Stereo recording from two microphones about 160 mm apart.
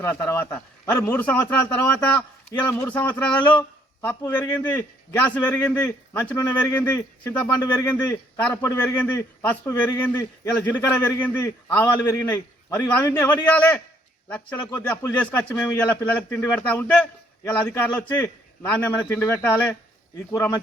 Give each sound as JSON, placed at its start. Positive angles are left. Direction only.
{"t": 0.0, "sound": "a man's voice", "side_deg": 15}